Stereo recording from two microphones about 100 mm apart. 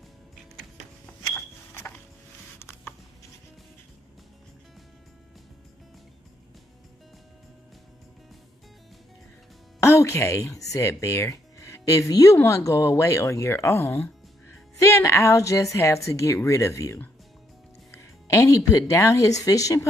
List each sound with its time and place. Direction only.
1.3 s smoke detector: 20° left (ahead or behind)
2.6 s a sound: 25° left (ahead or behind)
9.8 s speech: 30° left (ahead or behind)
18.3 s speech: 35° left (ahead or behind)